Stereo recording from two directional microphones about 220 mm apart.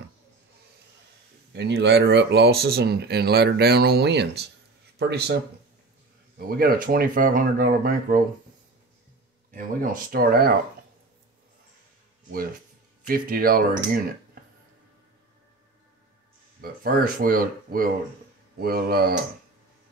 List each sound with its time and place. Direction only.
1.5 s speech: 50° right (ahead or behind)
9.5 s speech: 40° right (ahead or behind)
13.0 s speech: 40° right (ahead or behind)
16.8 s speech: 40° right (ahead or behind)